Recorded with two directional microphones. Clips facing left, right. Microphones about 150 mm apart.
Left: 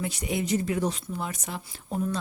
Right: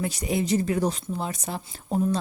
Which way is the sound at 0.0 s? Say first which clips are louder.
Right 3 dB; 40° right (ahead or behind).